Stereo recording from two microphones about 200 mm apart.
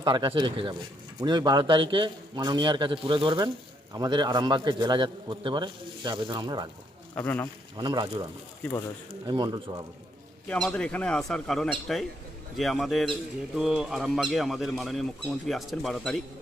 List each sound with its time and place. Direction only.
0.0 s a man's voice: 25° right (ahead or behind)
7.2 s speech: 10° left (ahead or behind)
7.8 s a man's voice: 20° right (ahead or behind)
9.2 s a man's voice: 20° right (ahead or behind)
10.5 s a man's voice: 5° left (ahead or behind)